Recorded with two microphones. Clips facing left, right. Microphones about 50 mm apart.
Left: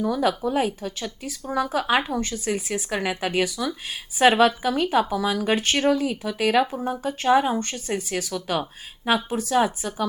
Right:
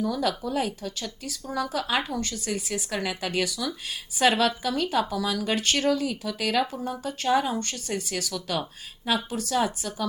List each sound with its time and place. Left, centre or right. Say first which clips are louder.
0.0 s speech: left 4 dB; left